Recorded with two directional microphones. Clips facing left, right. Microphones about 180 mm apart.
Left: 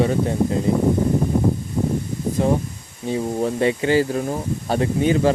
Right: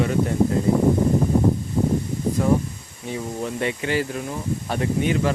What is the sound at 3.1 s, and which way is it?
Speech, 35° left (ahead or behind).